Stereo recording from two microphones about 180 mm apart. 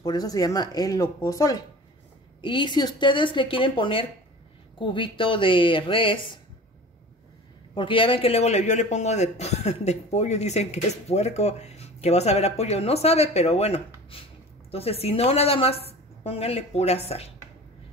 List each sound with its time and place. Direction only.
0.0 s speech: 20° left (ahead or behind)
7.7 s a man's voice: 30° left (ahead or behind)